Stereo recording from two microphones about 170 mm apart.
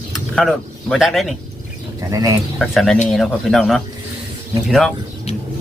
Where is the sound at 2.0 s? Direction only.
20° right (ahead or behind).